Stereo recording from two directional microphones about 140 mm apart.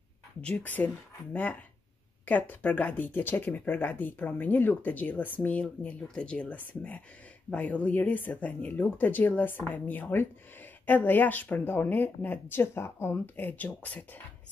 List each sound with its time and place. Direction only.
0.4 s speech: 10° left (ahead or behind)